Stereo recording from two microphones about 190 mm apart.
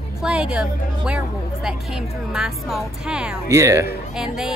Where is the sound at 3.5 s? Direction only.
15° right (ahead or behind).